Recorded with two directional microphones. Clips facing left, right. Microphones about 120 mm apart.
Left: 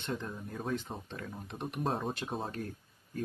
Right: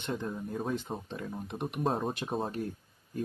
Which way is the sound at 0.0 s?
20° right (ahead or behind).